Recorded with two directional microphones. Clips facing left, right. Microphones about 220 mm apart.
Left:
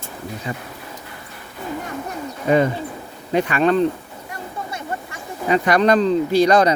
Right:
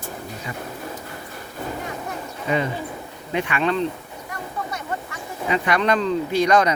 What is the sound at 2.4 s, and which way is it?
Speech, 45° left (ahead or behind).